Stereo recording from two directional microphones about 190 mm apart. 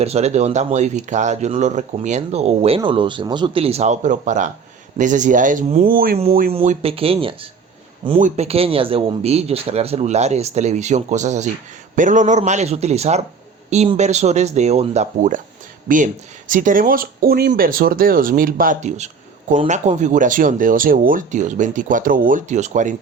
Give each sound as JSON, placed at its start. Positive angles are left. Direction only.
{"t": 0.0, "sound": "speech", "side_deg": -35}
{"t": 6.5, "sound": "speech", "side_deg": -30}
{"t": 16.5, "sound": "speech", "side_deg": -45}